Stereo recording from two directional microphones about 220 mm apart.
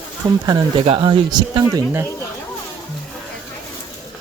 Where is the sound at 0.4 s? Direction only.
20° right (ahead or behind).